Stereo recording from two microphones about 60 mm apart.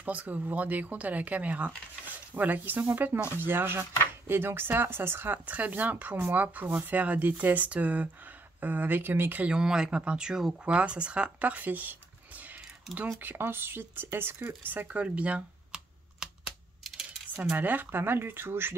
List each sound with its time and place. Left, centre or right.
0.0 s speech: right
5.5 s speech: right
9.4 s speech: centre; by 12.0 s right
13.2 s speech: right
14.4 s speech: right
17.6 s speech: right